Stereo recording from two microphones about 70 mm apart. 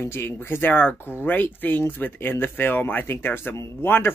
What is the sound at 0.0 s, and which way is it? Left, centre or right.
Speech, left.